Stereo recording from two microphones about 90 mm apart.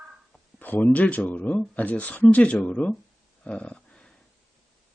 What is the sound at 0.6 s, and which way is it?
Speech, 15° left (ahead or behind).